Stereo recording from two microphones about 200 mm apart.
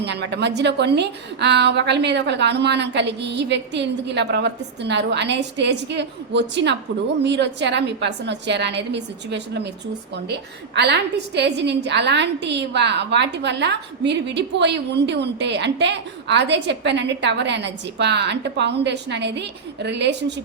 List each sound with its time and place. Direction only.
0.0 s a woman's voice: 60° right (ahead or behind)
10.8 s a woman's voice: 60° right (ahead or behind)